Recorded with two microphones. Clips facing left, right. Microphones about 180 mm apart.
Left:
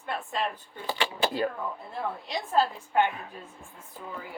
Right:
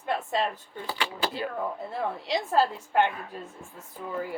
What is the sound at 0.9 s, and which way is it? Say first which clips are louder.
Speech: left 2 dB; 25° left (ahead or behind).